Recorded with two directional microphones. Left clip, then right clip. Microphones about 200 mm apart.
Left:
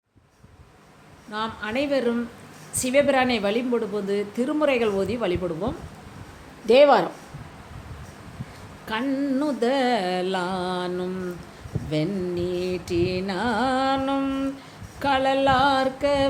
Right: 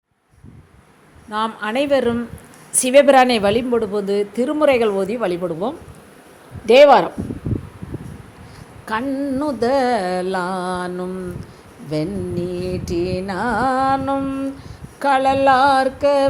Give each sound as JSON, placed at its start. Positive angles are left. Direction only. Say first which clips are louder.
{"t": 1.3, "sound": "a woman's voice", "louder": "right 7 dB", "side_deg": -30}
{"t": 6.7, "sound": "music", "louder": "right 6 dB", "side_deg": -15}
{"t": 8.9, "sound": "music", "louder": "right 4 dB", "side_deg": -15}
{"t": 14.9, "sound": "music", "louder": "right 6 dB", "side_deg": -20}